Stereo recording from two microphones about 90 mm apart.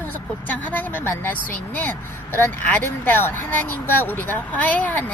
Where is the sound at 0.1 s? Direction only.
20° left (ahead or behind).